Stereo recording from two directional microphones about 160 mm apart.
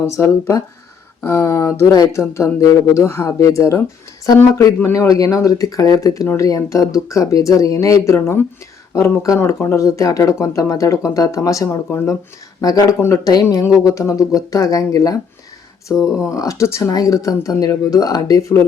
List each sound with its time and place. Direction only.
0.1 s speech: 15° left (ahead or behind)